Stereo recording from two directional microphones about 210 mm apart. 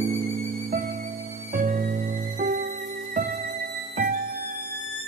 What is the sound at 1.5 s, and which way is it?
Music, 40° right (ahead or behind).